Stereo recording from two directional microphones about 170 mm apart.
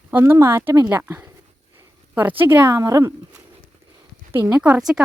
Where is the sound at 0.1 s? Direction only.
15° right (ahead or behind).